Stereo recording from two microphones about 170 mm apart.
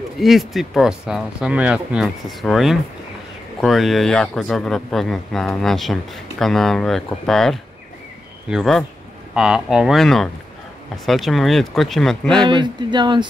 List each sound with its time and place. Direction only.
0.2 s speech: centre (ahead or behind)
12.4 s speech: 25° right (ahead or behind)